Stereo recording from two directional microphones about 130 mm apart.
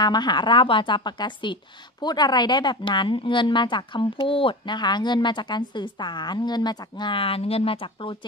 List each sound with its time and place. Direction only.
0.0 s speech: 35° left (ahead or behind)